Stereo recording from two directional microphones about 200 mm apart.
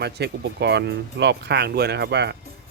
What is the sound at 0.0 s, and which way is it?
Speech, 55° right (ahead or behind).